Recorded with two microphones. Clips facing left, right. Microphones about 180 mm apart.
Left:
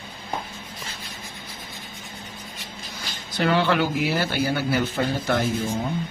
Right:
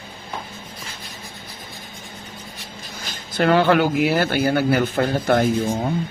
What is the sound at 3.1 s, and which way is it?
Speech, 50° right (ahead or behind).